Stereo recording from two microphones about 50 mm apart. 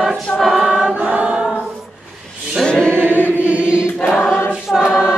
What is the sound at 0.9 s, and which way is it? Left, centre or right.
Choir, right.